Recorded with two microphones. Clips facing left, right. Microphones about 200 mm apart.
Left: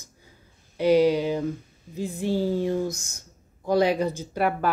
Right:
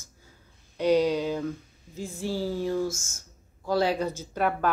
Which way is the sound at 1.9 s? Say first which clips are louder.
Left 5 dB; 20° left (ahead or behind).